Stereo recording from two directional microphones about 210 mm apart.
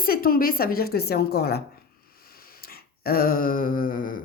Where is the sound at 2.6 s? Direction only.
45° left (ahead or behind).